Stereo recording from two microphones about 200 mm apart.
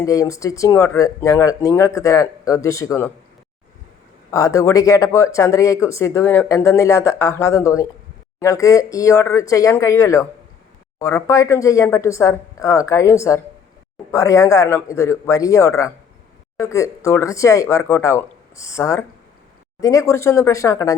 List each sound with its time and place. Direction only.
0.0 s speech: 15° left (ahead or behind)
4.3 s speech: 15° left (ahead or behind)